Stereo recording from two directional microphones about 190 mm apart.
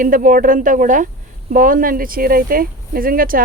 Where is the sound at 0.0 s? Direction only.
45° right (ahead or behind).